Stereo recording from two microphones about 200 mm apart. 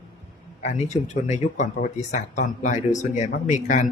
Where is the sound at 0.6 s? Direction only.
35° left (ahead or behind).